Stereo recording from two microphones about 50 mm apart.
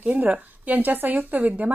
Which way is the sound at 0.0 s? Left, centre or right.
Right.